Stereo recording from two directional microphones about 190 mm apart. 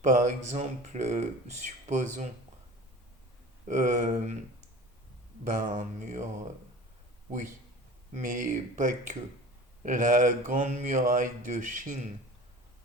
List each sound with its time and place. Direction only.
0.0 s speech: 40° right (ahead or behind)
3.7 s speech: 40° right (ahead or behind)
5.5 s speech: 40° right (ahead or behind)
8.1 s speech: 45° right (ahead or behind)